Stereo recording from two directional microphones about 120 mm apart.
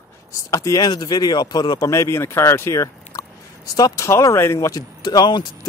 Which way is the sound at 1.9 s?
25° left (ahead or behind).